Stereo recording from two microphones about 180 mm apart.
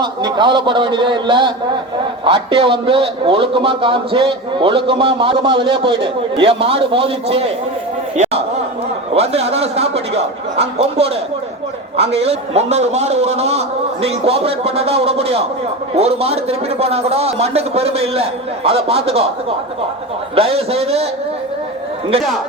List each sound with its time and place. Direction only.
0.0 s a man's voice: 25° right (ahead or behind)
8.1 s a sound: 40° right (ahead or behind)
9.1 s a man's voice: 35° right (ahead or behind)
12.1 s a man's voice: 35° right (ahead or behind)
20.3 s a man's voice: 35° right (ahead or behind)